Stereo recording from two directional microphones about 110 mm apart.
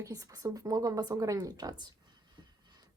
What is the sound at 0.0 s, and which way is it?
Speech, 30° right (ahead or behind).